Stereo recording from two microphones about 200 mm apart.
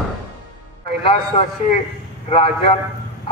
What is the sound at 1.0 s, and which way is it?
Speech, 30° left (ahead or behind).